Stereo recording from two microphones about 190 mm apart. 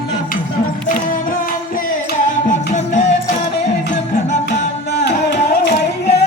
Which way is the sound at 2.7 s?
40° left (ahead or behind).